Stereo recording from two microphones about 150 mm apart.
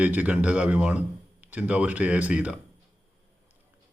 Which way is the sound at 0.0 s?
10° right (ahead or behind).